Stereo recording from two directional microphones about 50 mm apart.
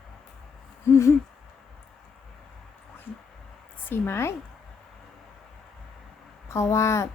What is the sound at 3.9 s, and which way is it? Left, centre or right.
Speech, left.